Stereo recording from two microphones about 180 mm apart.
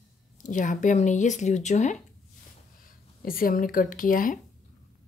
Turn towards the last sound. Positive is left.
turn(degrees=50)  # may be behind; listen again after turning